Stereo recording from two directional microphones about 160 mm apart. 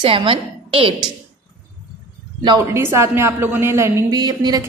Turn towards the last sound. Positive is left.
turn(degrees=-25)  # may be behind; listen again after turning